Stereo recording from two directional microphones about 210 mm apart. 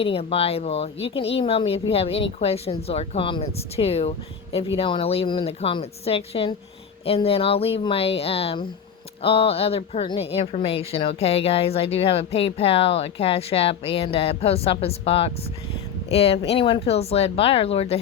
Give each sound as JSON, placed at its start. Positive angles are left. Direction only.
{"t": 0.0, "sound": "a woman's voice", "side_deg": 25}